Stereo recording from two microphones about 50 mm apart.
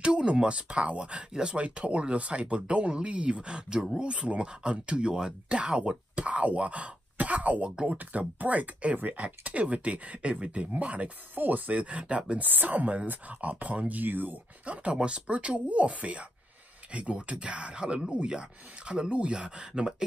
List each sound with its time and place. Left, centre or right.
0.0 s speech: right
7.7 s speech: centre
8.0 s speech: right
11.3 s speech: right; by 12.4 s centre
12.4 s speech: right
14.7 s speech: right